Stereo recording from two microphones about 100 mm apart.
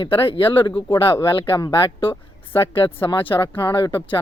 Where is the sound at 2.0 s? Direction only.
60° left (ahead or behind).